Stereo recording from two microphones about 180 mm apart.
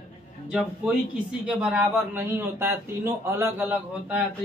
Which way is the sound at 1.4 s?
5° right (ahead or behind).